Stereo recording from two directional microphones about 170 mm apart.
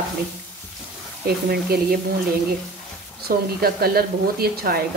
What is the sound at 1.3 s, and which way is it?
Speech, 65° right (ahead or behind).